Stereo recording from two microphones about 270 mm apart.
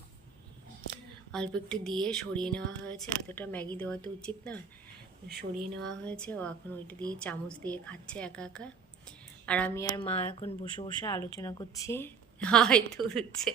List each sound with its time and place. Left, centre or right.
1.3 s a woman's voice: centre
5.3 s speech: right
6.1 s a woman's voice: centre